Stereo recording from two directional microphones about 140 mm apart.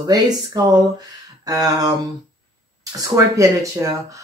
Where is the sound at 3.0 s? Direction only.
20° right (ahead or behind).